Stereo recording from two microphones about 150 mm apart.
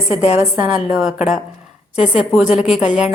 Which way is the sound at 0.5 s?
10° right (ahead or behind).